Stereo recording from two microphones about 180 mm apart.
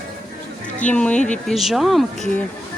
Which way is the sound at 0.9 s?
5° left (ahead or behind).